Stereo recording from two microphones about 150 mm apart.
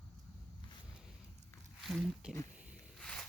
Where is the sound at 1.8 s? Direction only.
Centre (ahead or behind).